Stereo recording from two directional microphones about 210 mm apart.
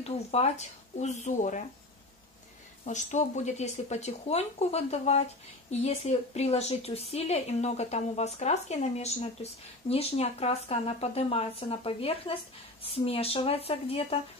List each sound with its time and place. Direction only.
0.0 s speech: 30° left (ahead or behind)
2.8 s speech: 35° left (ahead or behind)